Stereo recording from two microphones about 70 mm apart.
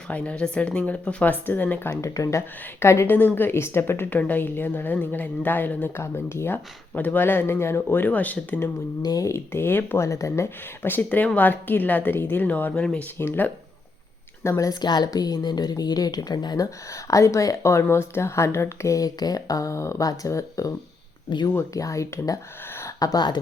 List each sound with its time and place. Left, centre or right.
0.1 s speech: centre
1.9 s speech: left
3.1 s speech: left
6.0 s speech: left
9.0 s speech: left
9.3 s speech: left
10.1 s speech: left
10.8 s speech: left
14.7 s a woman's voice: left
16.9 s speech: left
23.0 s a woman's voice: left